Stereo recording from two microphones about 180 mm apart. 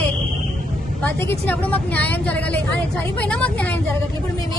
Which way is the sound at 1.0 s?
10° left (ahead or behind).